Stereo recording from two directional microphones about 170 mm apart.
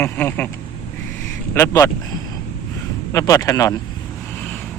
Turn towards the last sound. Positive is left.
turn(degrees=20)  # may be behind; listen again after turning